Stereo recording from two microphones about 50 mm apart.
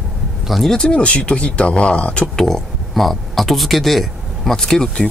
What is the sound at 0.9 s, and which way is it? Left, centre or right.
Speech, left.